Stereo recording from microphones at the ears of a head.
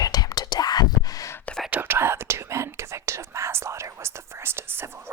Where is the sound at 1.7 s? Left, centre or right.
Right.